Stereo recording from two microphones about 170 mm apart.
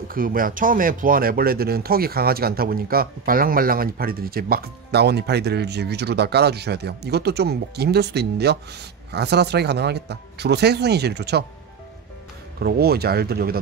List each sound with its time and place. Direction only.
0.1 s speech: 55° right (ahead or behind); by 11.4 s 75° right (ahead or behind)
12.5 s speech: 65° right (ahead or behind)